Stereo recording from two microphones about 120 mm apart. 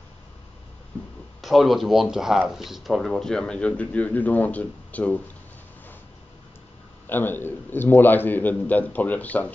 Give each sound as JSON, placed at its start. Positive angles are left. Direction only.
{"t": 1.4, "sound": "speech", "side_deg": 0}
{"t": 7.1, "sound": "a man's voice", "side_deg": 15}